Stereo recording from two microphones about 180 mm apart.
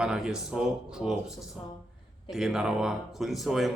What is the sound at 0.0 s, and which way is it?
Speech, 5° right (ahead or behind).